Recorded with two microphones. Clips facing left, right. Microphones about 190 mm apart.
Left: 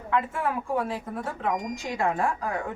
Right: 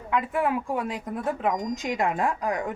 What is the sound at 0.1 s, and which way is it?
A woman's voice, 15° right (ahead or behind).